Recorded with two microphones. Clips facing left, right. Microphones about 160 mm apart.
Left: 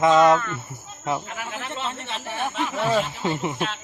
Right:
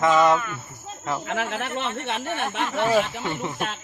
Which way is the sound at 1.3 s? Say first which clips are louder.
Right 6 dB; 70° right (ahead or behind).